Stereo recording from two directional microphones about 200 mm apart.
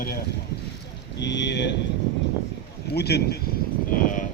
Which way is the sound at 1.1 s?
60° left (ahead or behind).